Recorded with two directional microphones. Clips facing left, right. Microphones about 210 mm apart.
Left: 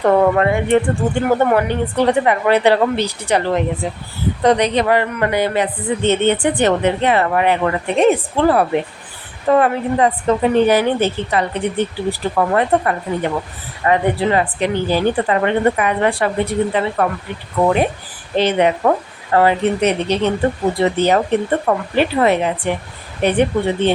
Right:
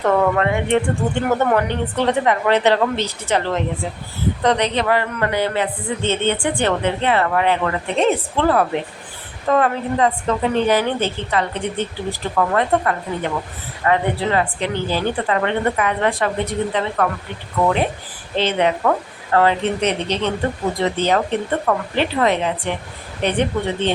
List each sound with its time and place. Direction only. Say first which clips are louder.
0.0 s speech: left 4 dB; 30° left (ahead or behind)
0.3 s speech: left 3 dB; 5° left (ahead or behind)
18.8 s speech: left 3 dB; 25° left (ahead or behind)
19.4 s speech: left 3 dB; 10° left (ahead or behind)